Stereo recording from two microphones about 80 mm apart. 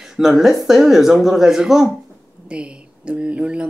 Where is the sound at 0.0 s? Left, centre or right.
Centre.